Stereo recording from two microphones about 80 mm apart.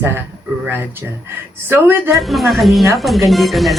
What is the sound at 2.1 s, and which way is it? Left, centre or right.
Speech, centre.